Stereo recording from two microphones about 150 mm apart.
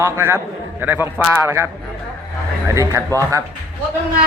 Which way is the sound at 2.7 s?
20° right (ahead or behind).